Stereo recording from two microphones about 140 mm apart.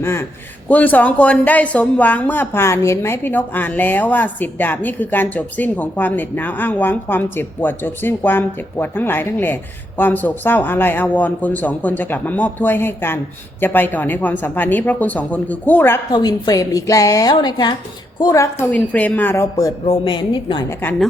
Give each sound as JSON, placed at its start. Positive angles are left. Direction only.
{"t": 0.0, "sound": "speech", "side_deg": 15}
{"t": 16.1, "sound": "a woman's voice", "side_deg": 30}
{"t": 18.7, "sound": "speech", "side_deg": 10}
{"t": 19.8, "sound": "a woman's voice", "side_deg": 40}